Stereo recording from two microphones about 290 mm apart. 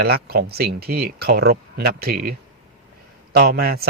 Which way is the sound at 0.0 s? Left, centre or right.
Right.